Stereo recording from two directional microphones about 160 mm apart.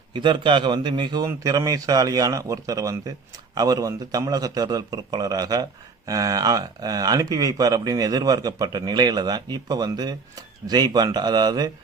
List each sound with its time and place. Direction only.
0.1 s speech: 30° right (ahead or behind)